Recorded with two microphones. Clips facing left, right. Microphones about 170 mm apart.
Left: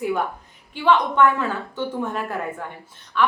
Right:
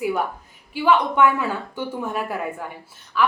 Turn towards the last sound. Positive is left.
turn(degrees=-5)  # may be behind; listen again after turning